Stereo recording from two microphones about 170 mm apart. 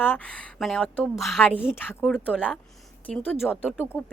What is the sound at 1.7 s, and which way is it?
Speech, 15° left (ahead or behind).